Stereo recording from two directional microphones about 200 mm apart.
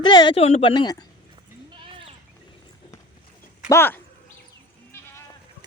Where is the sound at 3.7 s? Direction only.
10° left (ahead or behind).